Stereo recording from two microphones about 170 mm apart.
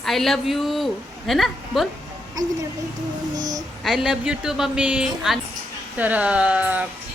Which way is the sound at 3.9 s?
5° right (ahead or behind).